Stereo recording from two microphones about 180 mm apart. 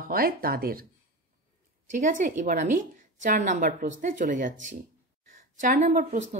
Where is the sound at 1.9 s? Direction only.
45° right (ahead or behind).